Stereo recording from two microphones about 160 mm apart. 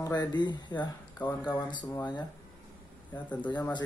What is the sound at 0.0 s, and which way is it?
Speech, 25° left (ahead or behind).